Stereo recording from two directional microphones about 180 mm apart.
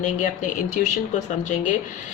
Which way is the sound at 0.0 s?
45° left (ahead or behind).